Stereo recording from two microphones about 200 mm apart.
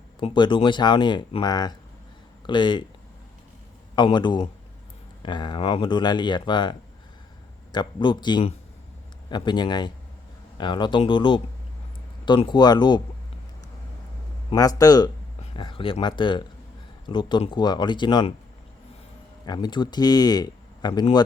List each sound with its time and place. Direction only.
0.2 s speech: 25° left (ahead or behind)
3.9 s speech: 20° left (ahead or behind)
14.5 s speech: 20° left (ahead or behind)
19.5 s speech: 20° left (ahead or behind)